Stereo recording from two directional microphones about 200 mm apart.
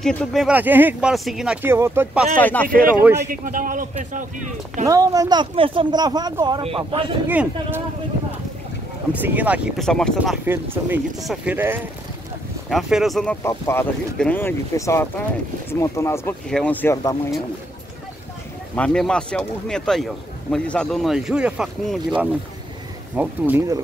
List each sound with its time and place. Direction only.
0.0 s speech: 5° left (ahead or behind)
2.4 s speech: 10° left (ahead or behind)
3.0 s speech: 10° right (ahead or behind)
3.3 s a man's voice: 45° right (ahead or behind)
4.8 s speech: 15° right (ahead or behind)
7.2 s speech: 10° right (ahead or behind)
9.2 s speech: 10° right (ahead or behind)
9.8 s speech: 5° left (ahead or behind)
10.4 s speech: 10° right (ahead or behind); by 17.2 s 15° left (ahead or behind)
18.8 s speech: 5° left (ahead or behind)